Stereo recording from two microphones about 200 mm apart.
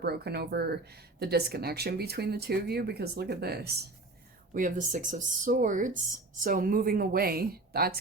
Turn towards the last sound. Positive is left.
turn(degrees=-50)  # may be behind; listen again after turning